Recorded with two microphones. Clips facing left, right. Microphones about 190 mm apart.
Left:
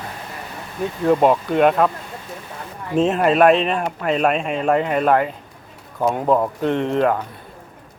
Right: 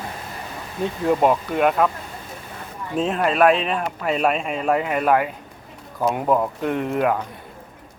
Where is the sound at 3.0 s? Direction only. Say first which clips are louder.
Left 4 dB; centre (ahead or behind).